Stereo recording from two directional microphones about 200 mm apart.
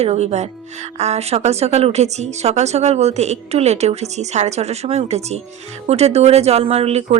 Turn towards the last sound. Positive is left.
turn(degrees=-30)  # may be behind; listen again after turning